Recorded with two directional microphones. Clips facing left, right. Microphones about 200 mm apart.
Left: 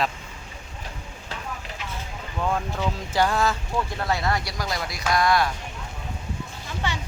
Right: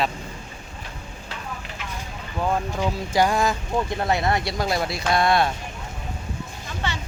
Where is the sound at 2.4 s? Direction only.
15° right (ahead or behind).